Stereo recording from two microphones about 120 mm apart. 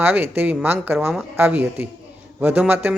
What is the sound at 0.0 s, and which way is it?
Speech, 15° right (ahead or behind).